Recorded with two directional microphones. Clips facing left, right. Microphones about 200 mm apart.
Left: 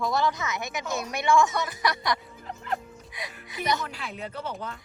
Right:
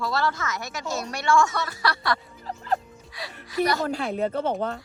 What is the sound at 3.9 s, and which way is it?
Speech, 40° right (ahead or behind).